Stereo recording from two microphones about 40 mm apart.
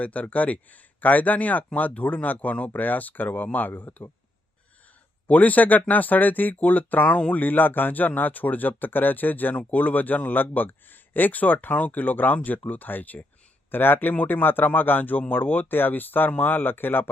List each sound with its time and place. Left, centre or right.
0.0 s speech: left
5.3 s a man's voice: left